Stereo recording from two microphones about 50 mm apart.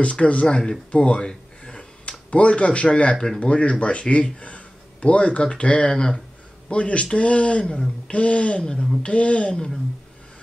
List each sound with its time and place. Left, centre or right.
0.0 s speech: left